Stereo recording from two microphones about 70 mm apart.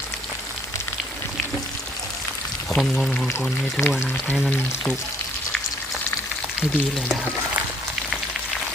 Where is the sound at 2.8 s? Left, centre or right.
Centre.